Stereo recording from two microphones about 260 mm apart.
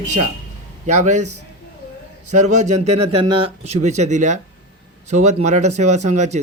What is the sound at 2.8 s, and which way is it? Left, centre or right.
Speech, right.